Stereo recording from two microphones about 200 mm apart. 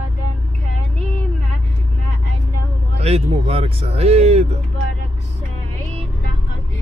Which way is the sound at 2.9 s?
30° right (ahead or behind).